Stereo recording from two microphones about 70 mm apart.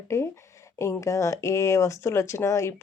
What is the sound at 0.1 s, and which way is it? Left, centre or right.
Speech, left.